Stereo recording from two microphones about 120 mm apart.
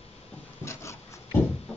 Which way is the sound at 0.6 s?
25° left (ahead or behind).